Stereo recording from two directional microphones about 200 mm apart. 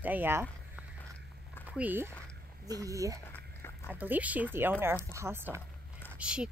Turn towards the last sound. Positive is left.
turn(degrees=-5)  # may be behind; listen again after turning